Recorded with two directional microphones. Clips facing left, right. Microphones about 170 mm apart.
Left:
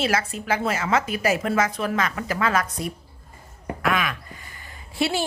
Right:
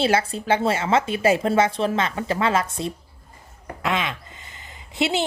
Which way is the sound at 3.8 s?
25° right (ahead or behind).